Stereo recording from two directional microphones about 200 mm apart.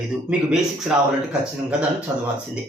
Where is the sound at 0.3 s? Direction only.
5° right (ahead or behind).